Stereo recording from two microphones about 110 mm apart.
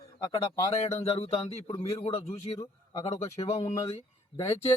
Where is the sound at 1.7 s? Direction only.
55° left (ahead or behind); by 4.0 s 70° left (ahead or behind).